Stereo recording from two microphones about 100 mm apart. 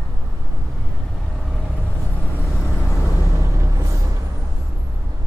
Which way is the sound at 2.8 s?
30° left (ahead or behind).